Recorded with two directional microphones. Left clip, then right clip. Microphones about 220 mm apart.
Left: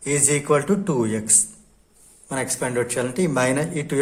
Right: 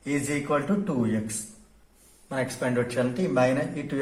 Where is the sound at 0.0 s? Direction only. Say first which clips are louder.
Left 7 dB; 45° left (ahead or behind).